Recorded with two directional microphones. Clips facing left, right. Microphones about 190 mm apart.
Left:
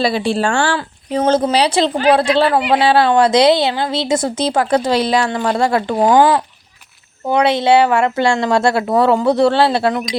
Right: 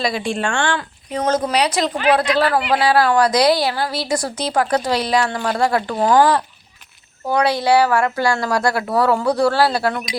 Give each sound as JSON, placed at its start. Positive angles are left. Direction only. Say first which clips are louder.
{"t": 0.0, "sound": "speech", "louder": "left 5 dB", "side_deg": 35}